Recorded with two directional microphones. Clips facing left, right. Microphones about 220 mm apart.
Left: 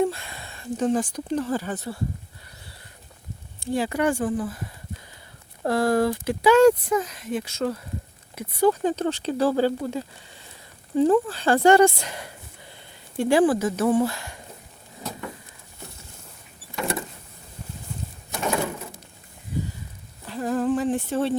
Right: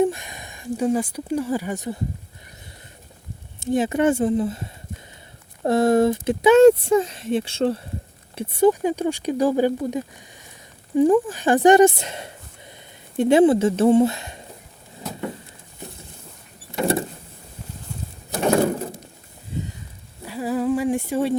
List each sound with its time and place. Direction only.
0.0 s speech: 15° right (ahead or behind)
3.6 s speech: 20° right (ahead or behind)
8.8 s speech: 10° right (ahead or behind)
16.7 s power windows: 30° right (ahead or behind)
18.3 s bird: 40° right (ahead or behind)
19.5 s a sound: 25° right (ahead or behind)
20.2 s humming: 10° right (ahead or behind)